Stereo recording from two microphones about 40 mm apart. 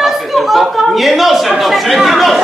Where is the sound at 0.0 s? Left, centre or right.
Centre.